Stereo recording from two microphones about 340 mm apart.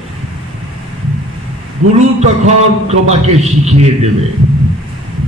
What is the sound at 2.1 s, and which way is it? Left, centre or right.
A man's voice, centre.